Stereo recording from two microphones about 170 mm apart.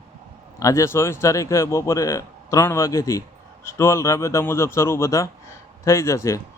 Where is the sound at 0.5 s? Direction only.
15° left (ahead or behind).